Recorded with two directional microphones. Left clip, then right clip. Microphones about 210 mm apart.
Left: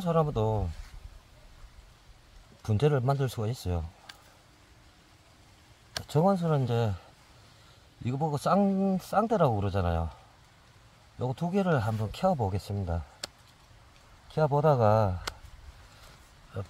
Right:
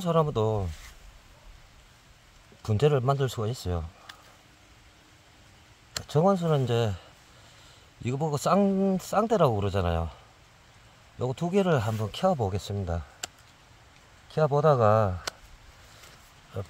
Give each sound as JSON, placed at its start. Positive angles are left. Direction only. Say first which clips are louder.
{"t": 0.0, "sound": "speech", "louder": "right 2 dB", "side_deg": -20}
{"t": 2.6, "sound": "speech", "louder": "right 3 dB", "side_deg": -15}
{"t": 6.0, "sound": "speech", "louder": "right 2 dB", "side_deg": -10}
{"t": 8.0, "sound": "speech", "louder": "right 2 dB", "side_deg": -25}
{"t": 11.1, "sound": "speech", "louder": "right 4 dB", "side_deg": -20}
{"t": 14.3, "sound": "speech", "louder": "right 2 dB", "side_deg": -15}
{"t": 16.5, "sound": "speech", "louder": "right 3 dB", "side_deg": -20}